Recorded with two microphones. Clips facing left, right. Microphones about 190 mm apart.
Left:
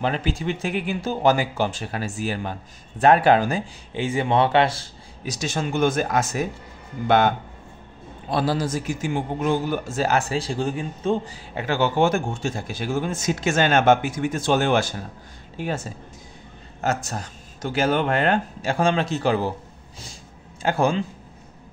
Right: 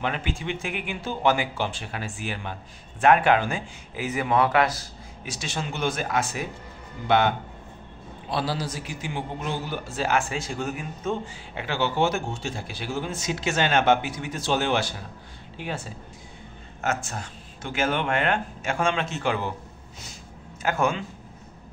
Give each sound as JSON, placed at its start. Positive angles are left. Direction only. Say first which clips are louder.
{"t": 0.0, "sound": "a man's voice", "louder": "left 5 dB", "side_deg": 35}
{"t": 20.6, "sound": "speech", "louder": "left 4 dB", "side_deg": 35}